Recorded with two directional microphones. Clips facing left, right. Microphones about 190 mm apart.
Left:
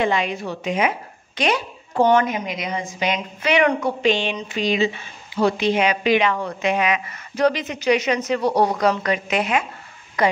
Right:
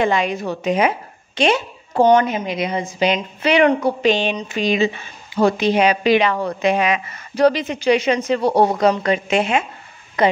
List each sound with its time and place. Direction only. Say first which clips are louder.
0.0 s a woman's voice: right 3 dB; 45° right (ahead or behind); by 10.3 s 25° right (ahead or behind)